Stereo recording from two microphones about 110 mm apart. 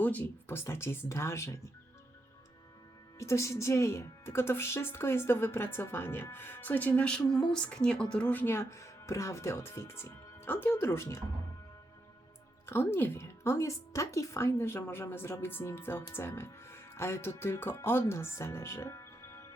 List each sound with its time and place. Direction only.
0.0 s a woman's voice: 15° left (ahead or behind)
3.2 s a woman's voice: 25° left (ahead or behind)
12.6 s a woman's voice: 20° left (ahead or behind)